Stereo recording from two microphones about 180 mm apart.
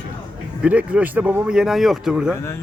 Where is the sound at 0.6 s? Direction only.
5° right (ahead or behind).